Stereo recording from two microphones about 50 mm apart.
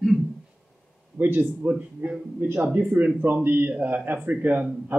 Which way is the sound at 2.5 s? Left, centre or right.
Right.